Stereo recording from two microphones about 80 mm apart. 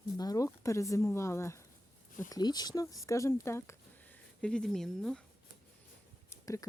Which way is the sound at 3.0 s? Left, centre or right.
Left.